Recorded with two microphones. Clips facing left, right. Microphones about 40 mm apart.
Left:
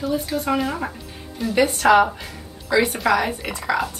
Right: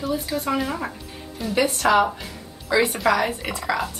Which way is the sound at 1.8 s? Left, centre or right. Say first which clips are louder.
Left 4 dB; centre.